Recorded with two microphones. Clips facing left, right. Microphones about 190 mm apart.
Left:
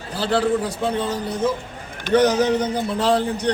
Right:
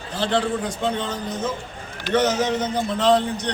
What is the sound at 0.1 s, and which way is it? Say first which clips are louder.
A man's voice: left 3 dB; 5° left (ahead or behind).